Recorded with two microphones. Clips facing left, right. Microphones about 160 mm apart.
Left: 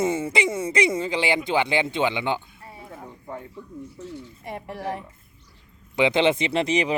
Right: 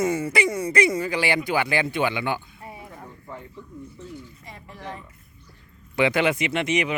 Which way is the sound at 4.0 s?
70° left (ahead or behind).